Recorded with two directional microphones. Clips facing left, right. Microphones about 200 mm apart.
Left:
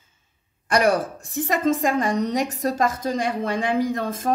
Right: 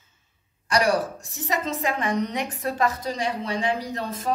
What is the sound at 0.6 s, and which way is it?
A woman's voice, 55° left (ahead or behind).